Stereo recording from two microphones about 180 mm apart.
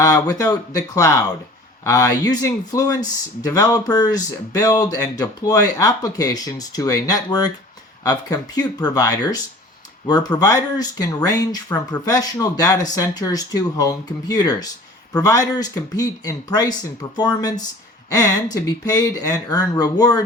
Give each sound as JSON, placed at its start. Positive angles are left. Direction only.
{"t": 0.0, "sound": "speech", "side_deg": 20}
{"t": 18.6, "sound": "speech", "side_deg": 20}